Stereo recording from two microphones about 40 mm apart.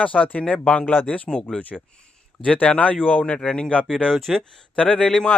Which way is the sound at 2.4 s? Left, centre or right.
Left.